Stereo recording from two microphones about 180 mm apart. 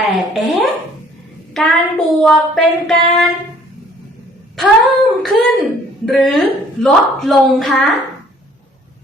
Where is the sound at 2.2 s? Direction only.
5° left (ahead or behind).